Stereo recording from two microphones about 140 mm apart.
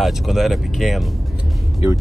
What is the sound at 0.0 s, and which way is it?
Speech, centre (ahead or behind).